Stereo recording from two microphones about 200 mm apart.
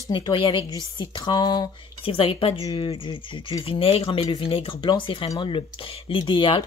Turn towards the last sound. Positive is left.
turn(degrees=25)  # may be behind; listen again after turning